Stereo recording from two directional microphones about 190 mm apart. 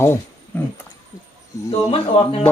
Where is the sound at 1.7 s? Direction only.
30° left (ahead or behind).